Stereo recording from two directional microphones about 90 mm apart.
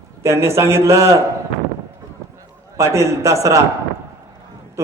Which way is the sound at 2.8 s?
35° right (ahead or behind).